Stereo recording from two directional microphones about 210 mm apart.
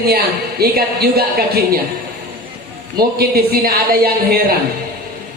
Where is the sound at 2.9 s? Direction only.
45° right (ahead or behind).